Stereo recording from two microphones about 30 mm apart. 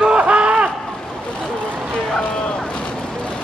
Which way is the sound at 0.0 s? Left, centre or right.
Right.